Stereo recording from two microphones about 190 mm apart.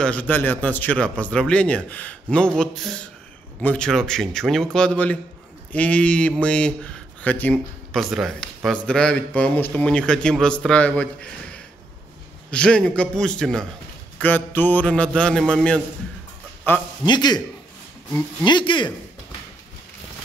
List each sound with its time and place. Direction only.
0.0 s a man's voice: 10° left (ahead or behind)
12.4 s a man's voice: 5° left (ahead or behind)
17.0 s a man's voice: 20° left (ahead or behind)